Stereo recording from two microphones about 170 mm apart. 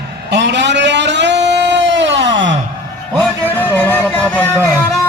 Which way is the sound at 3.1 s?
30° right (ahead or behind).